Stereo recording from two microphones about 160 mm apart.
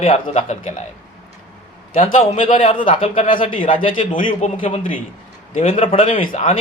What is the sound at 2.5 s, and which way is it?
Speech, 35° left (ahead or behind).